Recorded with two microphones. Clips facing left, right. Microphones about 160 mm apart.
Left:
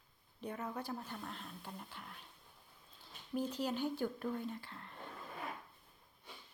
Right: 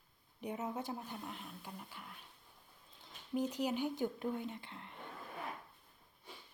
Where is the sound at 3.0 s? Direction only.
20° right (ahead or behind).